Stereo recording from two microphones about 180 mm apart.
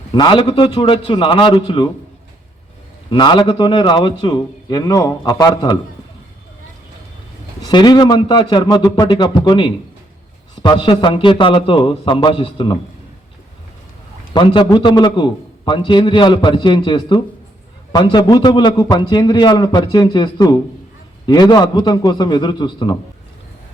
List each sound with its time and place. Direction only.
0.1 s a man's voice: 25° left (ahead or behind)
3.1 s a man's voice: 25° left (ahead or behind)
7.6 s a man's voice: 25° left (ahead or behind)
14.3 s a man's voice: 25° left (ahead or behind)